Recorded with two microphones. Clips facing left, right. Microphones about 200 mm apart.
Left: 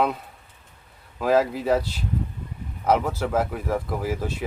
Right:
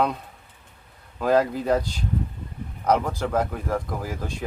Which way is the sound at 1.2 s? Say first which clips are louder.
Even; 5° left (ahead or behind).